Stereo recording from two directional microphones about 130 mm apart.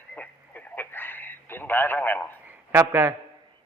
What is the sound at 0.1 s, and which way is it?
Radio, 10° left (ahead or behind).